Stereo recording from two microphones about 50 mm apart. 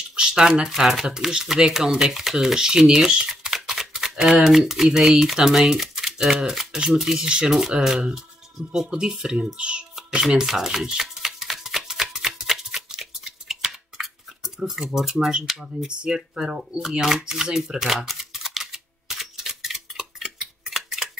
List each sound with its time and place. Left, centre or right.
0.1 s speech: centre
3.3 s a sound: centre
4.9 s a child's voice: centre
10.3 s a sound: centre
14.6 s speech: centre
16.8 s shuffling cards: centre